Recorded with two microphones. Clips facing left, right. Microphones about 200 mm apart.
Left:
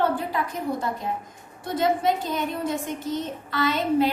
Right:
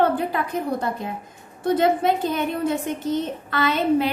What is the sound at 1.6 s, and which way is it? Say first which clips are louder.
A woman's voice: right 4 dB; 60° right (ahead or behind).